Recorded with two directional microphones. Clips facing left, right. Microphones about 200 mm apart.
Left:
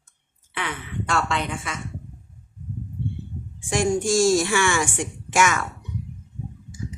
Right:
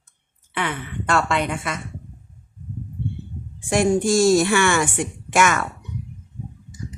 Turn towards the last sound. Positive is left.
turn(degrees=-55)  # may be behind; listen again after turning